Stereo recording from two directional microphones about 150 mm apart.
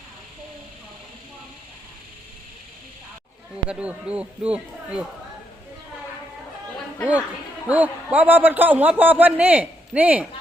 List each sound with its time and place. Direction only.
3.7 s a man's voice: 5° right (ahead or behind)
7.0 s a man's voice: 10° right (ahead or behind)